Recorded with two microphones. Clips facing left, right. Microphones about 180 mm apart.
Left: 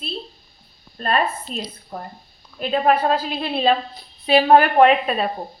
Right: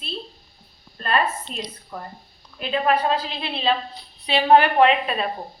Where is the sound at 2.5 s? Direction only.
45° left (ahead or behind).